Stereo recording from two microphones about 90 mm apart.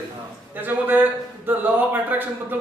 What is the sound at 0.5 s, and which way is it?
A man's voice, 20° right (ahead or behind).